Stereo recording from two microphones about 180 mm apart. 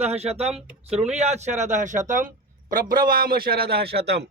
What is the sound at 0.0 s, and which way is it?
A man's voice, 35° right (ahead or behind).